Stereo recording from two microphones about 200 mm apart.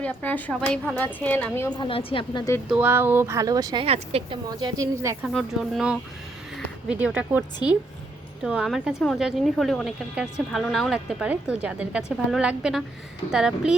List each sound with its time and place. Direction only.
0.0 s a woman's voice: 10° left (ahead or behind)
1.8 s a woman's voice: 25° left (ahead or behind)
2.6 s speech: 10° right (ahead or behind)
3.8 s speech: 30° right (ahead or behind)
4.4 s speech: 15° right (ahead or behind)
5.2 s speech: centre (ahead or behind)